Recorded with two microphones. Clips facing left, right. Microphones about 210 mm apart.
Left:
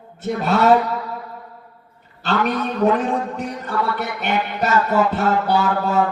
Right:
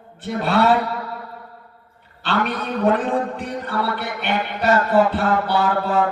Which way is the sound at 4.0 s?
45° left (ahead or behind).